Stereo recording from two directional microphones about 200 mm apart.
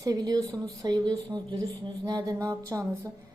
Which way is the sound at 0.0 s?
20° right (ahead or behind).